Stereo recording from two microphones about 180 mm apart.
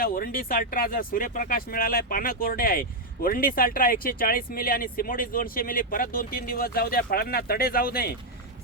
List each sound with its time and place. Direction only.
0.0 s speech: 55° left (ahead or behind)